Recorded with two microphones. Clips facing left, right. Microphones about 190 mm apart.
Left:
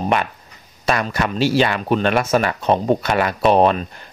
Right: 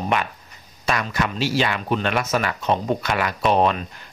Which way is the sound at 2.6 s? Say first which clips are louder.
Left 5 dB; 45° left (ahead or behind).